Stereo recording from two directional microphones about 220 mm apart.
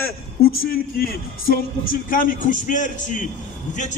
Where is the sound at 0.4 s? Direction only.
40° left (ahead or behind).